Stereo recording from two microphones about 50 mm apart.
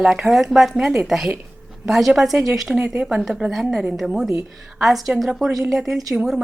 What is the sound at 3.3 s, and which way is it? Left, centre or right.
Speech, right.